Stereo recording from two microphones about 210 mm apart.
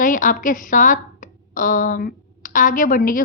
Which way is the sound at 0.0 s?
40° left (ahead or behind).